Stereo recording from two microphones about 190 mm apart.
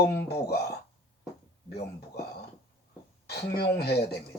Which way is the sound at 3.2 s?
60° left (ahead or behind).